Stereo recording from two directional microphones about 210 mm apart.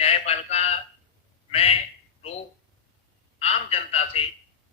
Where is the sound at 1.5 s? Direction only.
30° left (ahead or behind).